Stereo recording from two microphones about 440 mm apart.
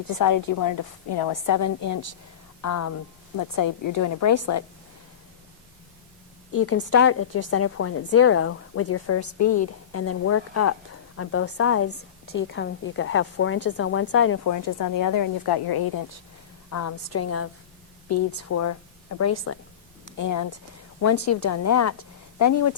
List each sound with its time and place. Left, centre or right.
0.1 s a woman's voice: left
1.5 s a woman's voice: left
6.5 s a woman's voice: left
14.4 s a woman's voice: left
16.7 s a woman's voice: left